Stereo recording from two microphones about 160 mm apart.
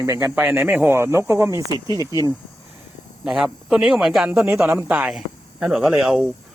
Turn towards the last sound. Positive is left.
turn(degrees=0)  # may be behind; listen again after turning